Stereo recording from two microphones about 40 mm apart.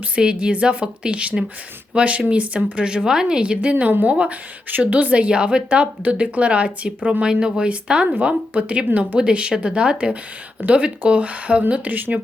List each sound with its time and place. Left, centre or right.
0.2 s a woman's voice: right
2.8 s a woman's voice: centre
4.8 s speech: right
5.1 s a woman's voice: right
6.0 s a woman's voice: right
8.9 s speech: right
9.1 s a woman's voice: right
10.6 s speech: right
11.9 s speech: right